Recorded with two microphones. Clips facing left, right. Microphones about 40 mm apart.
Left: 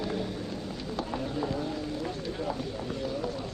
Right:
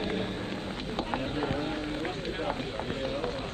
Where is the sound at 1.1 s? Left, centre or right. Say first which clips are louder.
Right 1 dB; right.